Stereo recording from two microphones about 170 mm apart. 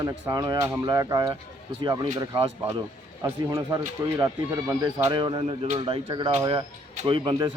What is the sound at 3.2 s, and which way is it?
A man's voice, 20° right (ahead or behind).